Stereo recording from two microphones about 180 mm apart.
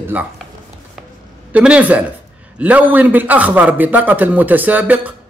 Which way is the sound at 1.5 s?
5° right (ahead or behind).